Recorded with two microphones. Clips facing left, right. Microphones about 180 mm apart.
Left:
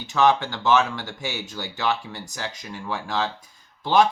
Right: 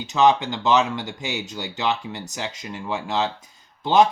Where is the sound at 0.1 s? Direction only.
20° right (ahead or behind).